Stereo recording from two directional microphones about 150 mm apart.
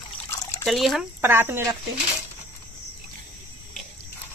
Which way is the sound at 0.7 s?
Centre (ahead or behind).